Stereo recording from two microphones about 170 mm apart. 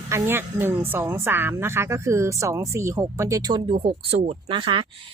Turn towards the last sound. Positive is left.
turn(degrees=-30)  # may be behind; listen again after turning